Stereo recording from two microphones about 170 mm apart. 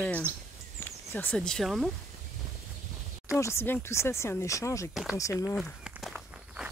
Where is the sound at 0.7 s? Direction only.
15° left (ahead or behind).